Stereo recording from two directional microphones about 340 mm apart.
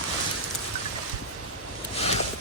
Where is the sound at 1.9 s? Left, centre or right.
Centre.